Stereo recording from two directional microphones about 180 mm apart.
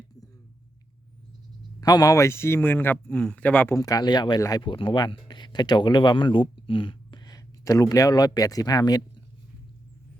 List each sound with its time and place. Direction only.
1.8 s speech: 20° left (ahead or behind)